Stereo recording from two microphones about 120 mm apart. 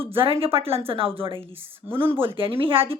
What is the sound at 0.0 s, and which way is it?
A woman's voice, 50° right (ahead or behind).